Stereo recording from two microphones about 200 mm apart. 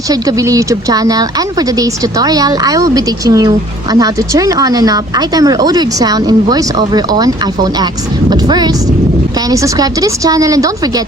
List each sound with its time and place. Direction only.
0.1 s speech: 15° right (ahead or behind)